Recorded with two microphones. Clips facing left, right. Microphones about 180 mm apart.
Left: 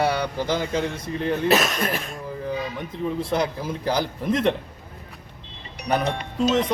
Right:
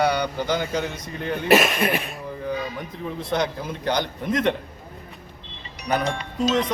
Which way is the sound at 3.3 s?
5° left (ahead or behind).